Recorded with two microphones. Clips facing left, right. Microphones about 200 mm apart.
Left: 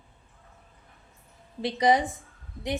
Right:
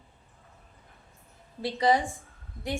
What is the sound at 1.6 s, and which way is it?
Speech, 20° left (ahead or behind).